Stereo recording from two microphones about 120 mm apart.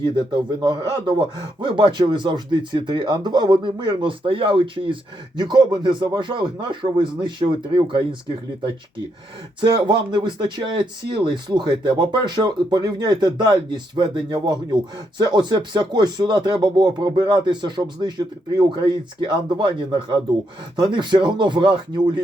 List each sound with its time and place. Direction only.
0.0 s speech: 40° right (ahead or behind)
9.6 s speech: 40° right (ahead or behind)